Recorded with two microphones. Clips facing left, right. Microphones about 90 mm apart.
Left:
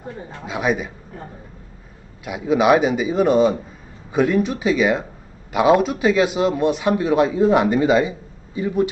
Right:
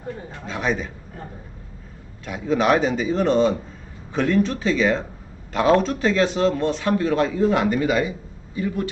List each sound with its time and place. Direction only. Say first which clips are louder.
0.5 s a man's voice: left 3 dB; 10° left (ahead or behind)
2.2 s a man's voice: left 3 dB; 10° left (ahead or behind)